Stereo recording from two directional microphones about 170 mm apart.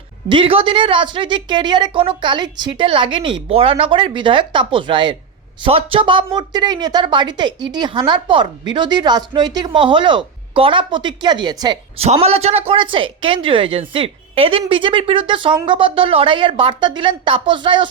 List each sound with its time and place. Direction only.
0.3 s a woman's voice: 30° right (ahead or behind)
12.0 s a woman's voice: 35° right (ahead or behind)